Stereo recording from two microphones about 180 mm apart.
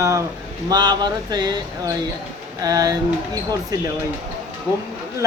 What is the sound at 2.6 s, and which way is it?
Speech, 20° right (ahead or behind).